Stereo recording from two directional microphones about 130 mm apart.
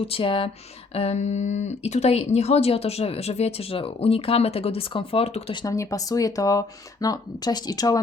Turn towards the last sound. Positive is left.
turn(degrees=30)  # may be behind; listen again after turning